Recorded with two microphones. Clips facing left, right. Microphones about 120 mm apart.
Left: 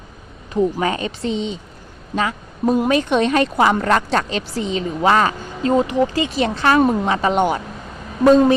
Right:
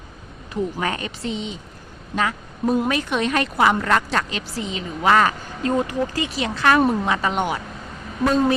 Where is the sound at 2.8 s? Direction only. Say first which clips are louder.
Left 6 dB; 25° left (ahead or behind).